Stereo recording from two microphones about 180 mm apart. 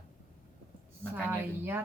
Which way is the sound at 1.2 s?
10° right (ahead or behind).